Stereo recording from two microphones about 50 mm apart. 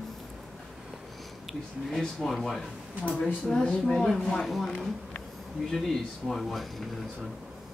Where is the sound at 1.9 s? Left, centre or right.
Centre.